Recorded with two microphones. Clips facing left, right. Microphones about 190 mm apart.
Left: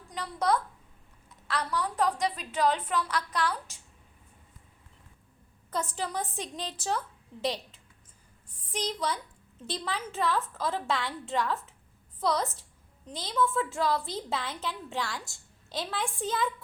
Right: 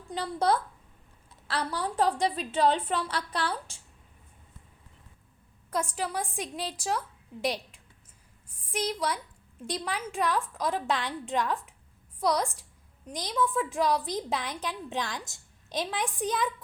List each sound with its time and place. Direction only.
0.1 s a woman's voice: 30° right (ahead or behind)
5.7 s a woman's voice: 10° right (ahead or behind)